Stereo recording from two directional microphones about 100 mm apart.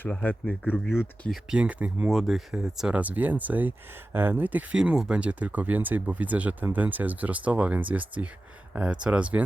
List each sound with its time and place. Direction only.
0.0 s a man's voice: 15° left (ahead or behind)
1.5 s speech: 15° right (ahead or behind)
2.0 s speech: centre (ahead or behind)